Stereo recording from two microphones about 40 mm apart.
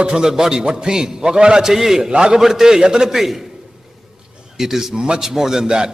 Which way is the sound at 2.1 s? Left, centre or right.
Right.